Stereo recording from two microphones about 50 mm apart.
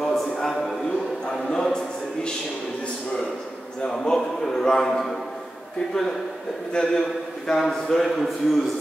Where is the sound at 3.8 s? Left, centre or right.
Centre.